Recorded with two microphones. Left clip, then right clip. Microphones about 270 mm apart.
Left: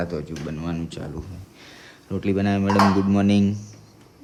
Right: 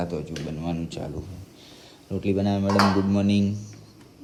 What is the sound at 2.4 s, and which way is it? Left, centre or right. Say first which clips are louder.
Speech: left 3 dB; centre.